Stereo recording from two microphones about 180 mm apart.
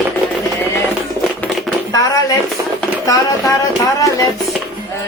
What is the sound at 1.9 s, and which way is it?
Speech, 20° left (ahead or behind).